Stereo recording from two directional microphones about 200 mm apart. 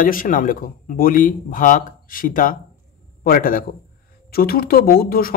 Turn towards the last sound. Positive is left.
turn(degrees=45)  # may be behind; listen again after turning